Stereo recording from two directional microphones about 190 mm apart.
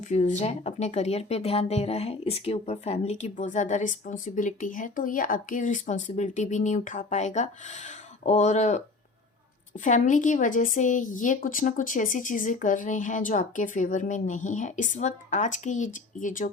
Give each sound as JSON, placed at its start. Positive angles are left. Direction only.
{"t": 0.1, "sound": "speech", "side_deg": 40}
{"t": 9.8, "sound": "speech", "side_deg": 40}